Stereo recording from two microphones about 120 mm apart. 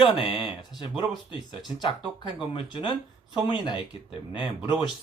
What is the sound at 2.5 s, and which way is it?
Speech, 45° left (ahead or behind).